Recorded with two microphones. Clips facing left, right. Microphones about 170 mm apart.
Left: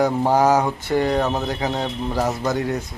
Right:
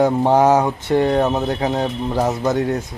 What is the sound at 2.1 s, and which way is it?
Speech, 20° right (ahead or behind).